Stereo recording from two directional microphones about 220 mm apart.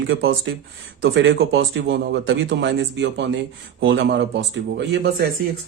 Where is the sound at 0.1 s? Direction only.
60° right (ahead or behind).